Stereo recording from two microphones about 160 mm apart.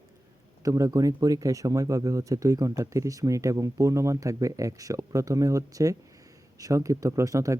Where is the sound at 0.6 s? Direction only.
20° right (ahead or behind).